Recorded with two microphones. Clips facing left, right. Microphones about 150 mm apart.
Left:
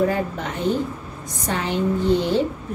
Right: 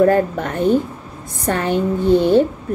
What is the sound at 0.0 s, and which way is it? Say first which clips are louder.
A woman's voice: right 7 dB; 55° right (ahead or behind).